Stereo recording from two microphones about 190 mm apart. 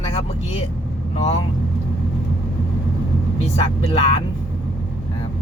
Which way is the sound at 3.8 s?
30° left (ahead or behind).